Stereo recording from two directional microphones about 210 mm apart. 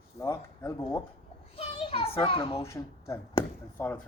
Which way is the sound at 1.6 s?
25° left (ahead or behind).